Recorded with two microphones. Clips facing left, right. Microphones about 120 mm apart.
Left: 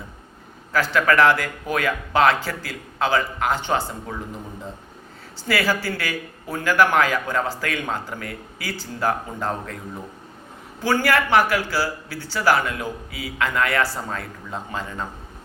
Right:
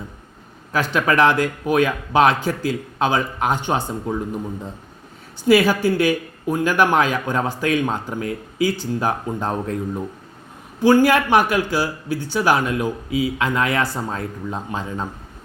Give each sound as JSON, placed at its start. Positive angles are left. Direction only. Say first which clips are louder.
{"t": 0.7, "sound": "speech", "louder": "even", "side_deg": -20}
{"t": 5.5, "sound": "speech", "louder": "right 8 dB", "side_deg": -20}
{"t": 10.8, "sound": "speech", "louder": "right 6 dB", "side_deg": -15}